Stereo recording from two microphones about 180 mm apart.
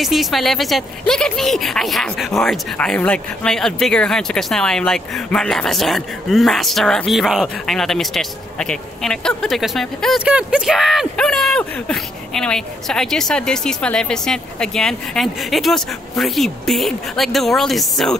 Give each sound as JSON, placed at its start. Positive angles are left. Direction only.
{"t": 0.0, "sound": "a woman's voice", "side_deg": 0}